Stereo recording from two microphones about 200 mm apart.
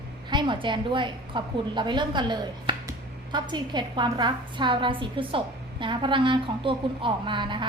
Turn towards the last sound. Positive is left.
turn(degrees=-25)  # may be behind; listen again after turning